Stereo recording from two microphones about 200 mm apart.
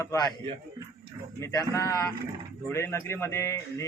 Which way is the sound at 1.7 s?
15° left (ahead or behind).